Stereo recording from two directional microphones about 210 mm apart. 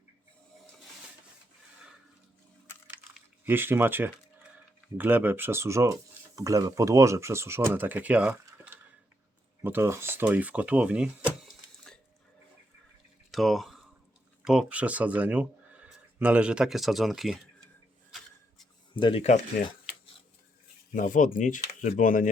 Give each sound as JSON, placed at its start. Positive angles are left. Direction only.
{"t": 2.8, "sound": "typing", "side_deg": -10}
{"t": 4.9, "sound": "speech", "side_deg": -10}
{"t": 13.3, "sound": "a sound", "side_deg": 0}
{"t": 14.4, "sound": "speech", "side_deg": -5}
{"t": 18.9, "sound": "speech", "side_deg": 25}
{"t": 20.9, "sound": "speech", "side_deg": 40}